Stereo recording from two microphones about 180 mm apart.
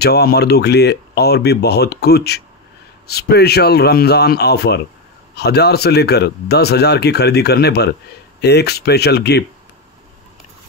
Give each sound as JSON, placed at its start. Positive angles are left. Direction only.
{"t": 0.0, "sound": "a man's voice", "side_deg": 65}